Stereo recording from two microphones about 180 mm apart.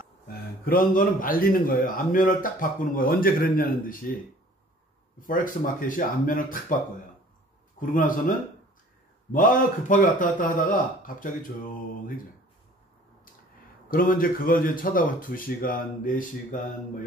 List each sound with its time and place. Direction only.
0.3 s a man's voice: 50° left (ahead or behind)
5.2 s a man's voice: 50° left (ahead or behind)
7.8 s a man's voice: 50° left (ahead or behind)
13.8 s a man's voice: 50° left (ahead or behind)